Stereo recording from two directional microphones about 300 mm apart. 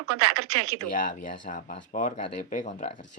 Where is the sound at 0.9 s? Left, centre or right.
Left.